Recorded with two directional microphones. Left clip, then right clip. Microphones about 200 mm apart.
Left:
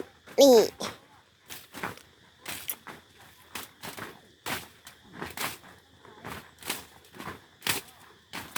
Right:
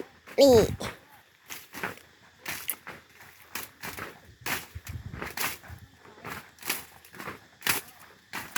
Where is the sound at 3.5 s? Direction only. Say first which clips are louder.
Right 2 dB; 10° left (ahead or behind).